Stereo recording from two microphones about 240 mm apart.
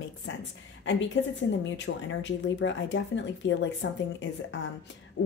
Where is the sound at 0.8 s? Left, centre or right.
Left.